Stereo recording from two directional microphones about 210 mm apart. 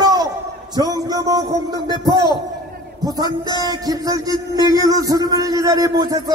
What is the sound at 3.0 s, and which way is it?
A man's voice, 20° right (ahead or behind).